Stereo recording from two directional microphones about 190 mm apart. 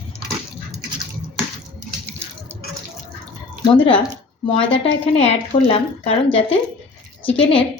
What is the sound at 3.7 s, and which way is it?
A woman's voice, 25° left (ahead or behind).